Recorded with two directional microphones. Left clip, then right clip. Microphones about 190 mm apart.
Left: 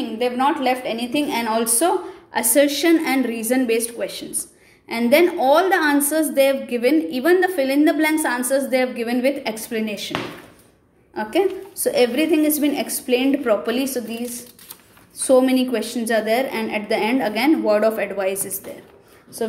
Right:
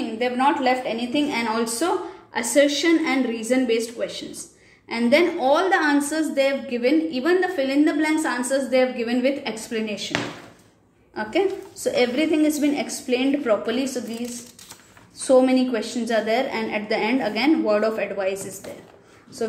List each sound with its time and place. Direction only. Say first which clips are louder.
0.2 s a woman's voice: left 1 dB; 10° left (ahead or behind)
11.1 s a woman's voice: left 2 dB; 15° left (ahead or behind)